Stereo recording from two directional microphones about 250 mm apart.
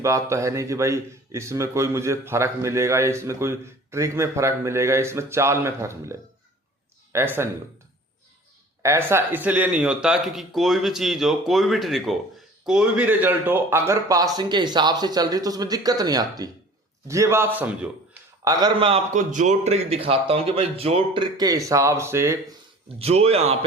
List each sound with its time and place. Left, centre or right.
0.0 s speech: centre
8.8 s a man's voice: centre
23.0 s a man's voice: right